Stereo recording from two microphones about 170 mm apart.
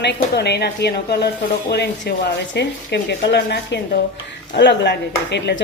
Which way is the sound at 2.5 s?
90° left.